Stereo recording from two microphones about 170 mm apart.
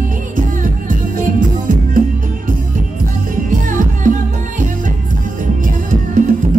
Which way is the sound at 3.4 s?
50° right (ahead or behind).